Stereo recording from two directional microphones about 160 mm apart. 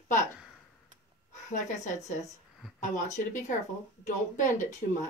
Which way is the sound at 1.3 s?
50° left (ahead or behind).